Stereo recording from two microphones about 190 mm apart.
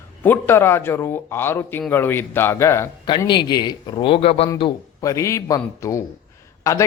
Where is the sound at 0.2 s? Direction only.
10° left (ahead or behind).